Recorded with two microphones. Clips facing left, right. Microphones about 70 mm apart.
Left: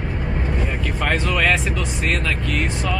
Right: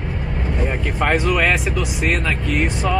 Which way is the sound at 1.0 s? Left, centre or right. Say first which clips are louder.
Right 3 dB; centre.